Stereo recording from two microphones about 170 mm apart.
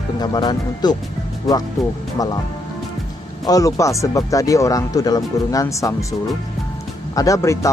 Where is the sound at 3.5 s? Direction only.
20° left (ahead or behind).